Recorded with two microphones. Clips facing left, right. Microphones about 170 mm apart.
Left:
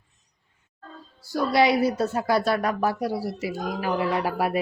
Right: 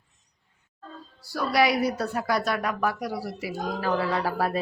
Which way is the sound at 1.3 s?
25° left (ahead or behind).